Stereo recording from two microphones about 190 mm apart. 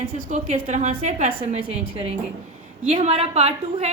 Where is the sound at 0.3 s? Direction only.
40° right (ahead or behind).